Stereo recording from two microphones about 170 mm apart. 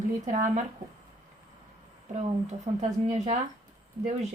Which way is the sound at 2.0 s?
45° right (ahead or behind).